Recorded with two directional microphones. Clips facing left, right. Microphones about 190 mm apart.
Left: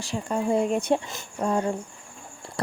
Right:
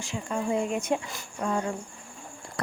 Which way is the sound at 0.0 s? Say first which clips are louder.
Left 4 dB; 35° left (ahead or behind).